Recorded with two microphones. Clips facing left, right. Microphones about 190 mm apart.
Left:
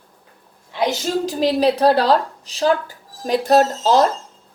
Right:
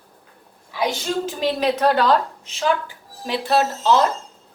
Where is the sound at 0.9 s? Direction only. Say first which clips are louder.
Left 3 dB; 40° left (ahead or behind).